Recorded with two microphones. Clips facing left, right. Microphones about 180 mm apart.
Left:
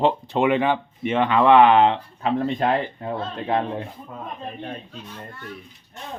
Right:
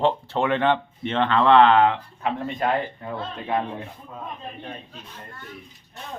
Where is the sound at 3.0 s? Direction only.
30° left (ahead or behind).